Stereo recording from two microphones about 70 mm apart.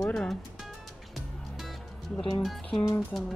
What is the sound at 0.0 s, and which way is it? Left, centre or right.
Speech, centre.